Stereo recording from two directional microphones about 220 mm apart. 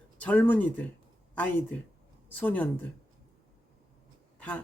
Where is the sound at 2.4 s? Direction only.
10° left (ahead or behind).